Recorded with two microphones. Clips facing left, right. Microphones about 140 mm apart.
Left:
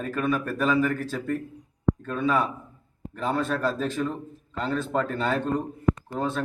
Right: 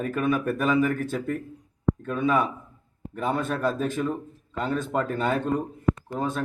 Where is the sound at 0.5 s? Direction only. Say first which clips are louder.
Right 1 dB; 15° right (ahead or behind).